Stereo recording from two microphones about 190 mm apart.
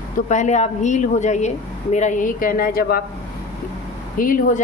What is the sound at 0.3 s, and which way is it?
Speech, 40° left (ahead or behind).